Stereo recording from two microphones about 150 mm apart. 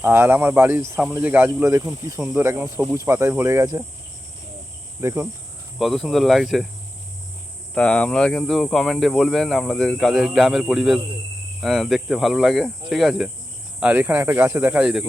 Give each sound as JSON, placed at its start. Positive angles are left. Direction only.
{"t": 0.0, "sound": "speech", "side_deg": -15}
{"t": 4.9, "sound": "speech", "side_deg": -15}
{"t": 5.8, "sound": "speech", "side_deg": 0}
{"t": 7.8, "sound": "speech", "side_deg": 5}